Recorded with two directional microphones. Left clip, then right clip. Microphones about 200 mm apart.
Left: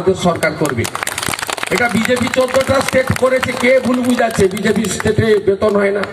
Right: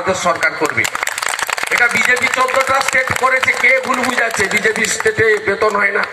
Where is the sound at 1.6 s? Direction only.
55° left (ahead or behind).